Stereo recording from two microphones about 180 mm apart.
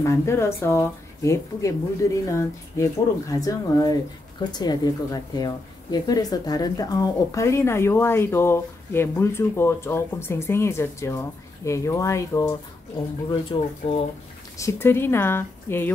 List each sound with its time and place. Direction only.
0.0 s speech: 15° left (ahead or behind)
13.3 s speech: 30° left (ahead or behind)
14.6 s speech: 15° left (ahead or behind)